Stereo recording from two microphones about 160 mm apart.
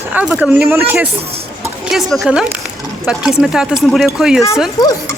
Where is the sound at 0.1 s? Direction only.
10° right (ahead or behind).